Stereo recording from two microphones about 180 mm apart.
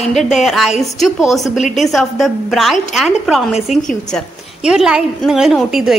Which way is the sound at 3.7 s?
35° left (ahead or behind).